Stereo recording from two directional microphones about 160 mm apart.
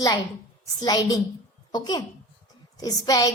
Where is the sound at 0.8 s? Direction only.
25° left (ahead or behind).